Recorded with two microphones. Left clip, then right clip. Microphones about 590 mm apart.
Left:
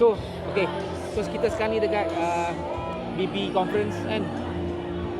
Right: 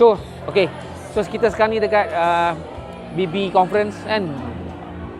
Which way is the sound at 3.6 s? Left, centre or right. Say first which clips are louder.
Right 9 dB; right.